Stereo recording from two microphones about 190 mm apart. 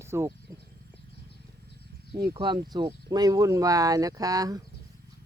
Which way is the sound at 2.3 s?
25° right (ahead or behind).